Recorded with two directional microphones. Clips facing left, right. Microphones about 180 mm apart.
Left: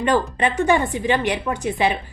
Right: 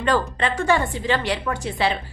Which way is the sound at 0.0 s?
15° left (ahead or behind).